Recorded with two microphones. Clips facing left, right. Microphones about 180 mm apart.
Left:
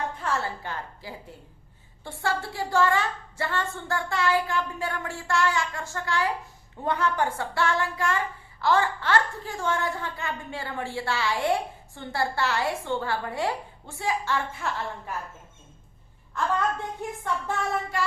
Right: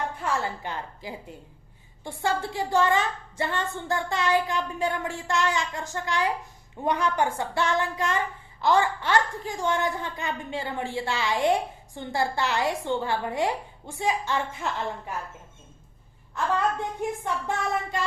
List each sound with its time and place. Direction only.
0.2 s a woman's voice: 10° right (ahead or behind)
17.0 s a woman's voice: 15° right (ahead or behind)